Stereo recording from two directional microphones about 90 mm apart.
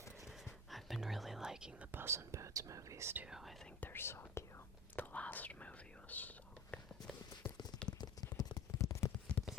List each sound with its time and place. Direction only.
0.4 s whispering: centre (ahead or behind)
1.9 s speech: 25° right (ahead or behind)
3.2 s whispering: 5° right (ahead or behind)
3.8 s whispering: 25° left (ahead or behind)
4.9 s whispering: 15° left (ahead or behind)
7.9 s a sound: 45° left (ahead or behind)